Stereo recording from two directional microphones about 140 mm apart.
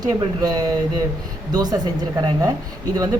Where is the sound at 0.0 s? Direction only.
25° right (ahead or behind).